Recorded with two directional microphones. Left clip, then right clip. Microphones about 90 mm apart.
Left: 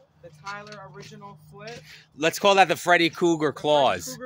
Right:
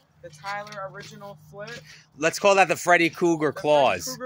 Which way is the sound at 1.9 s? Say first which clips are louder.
Even; 35° left (ahead or behind).